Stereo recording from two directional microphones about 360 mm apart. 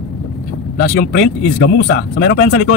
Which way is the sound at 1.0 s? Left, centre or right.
Left.